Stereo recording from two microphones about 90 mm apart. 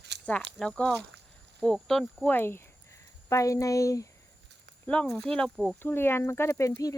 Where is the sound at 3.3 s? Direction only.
35° left (ahead or behind).